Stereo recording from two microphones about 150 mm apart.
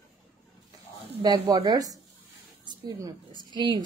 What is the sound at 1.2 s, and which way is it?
A woman's voice, 25° right (ahead or behind).